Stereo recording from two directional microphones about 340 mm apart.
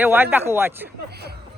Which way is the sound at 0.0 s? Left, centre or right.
Centre.